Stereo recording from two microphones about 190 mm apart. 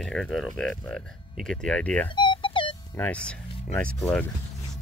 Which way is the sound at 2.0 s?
25° left (ahead or behind).